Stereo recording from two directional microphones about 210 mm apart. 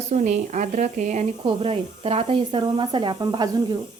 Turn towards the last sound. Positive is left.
turn(degrees=-20)  # may be behind; listen again after turning